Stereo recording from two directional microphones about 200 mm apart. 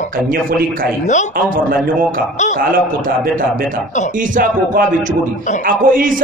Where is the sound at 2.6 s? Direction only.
45° right (ahead or behind).